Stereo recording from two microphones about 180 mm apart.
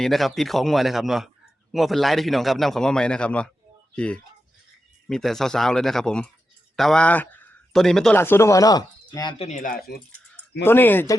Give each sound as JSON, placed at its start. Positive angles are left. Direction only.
{"t": 0.0, "sound": "a man's voice", "side_deg": 0}
{"t": 8.2, "sound": "speech", "side_deg": 15}
{"t": 9.5, "sound": "speech", "side_deg": 45}
{"t": 10.6, "sound": "speech", "side_deg": 10}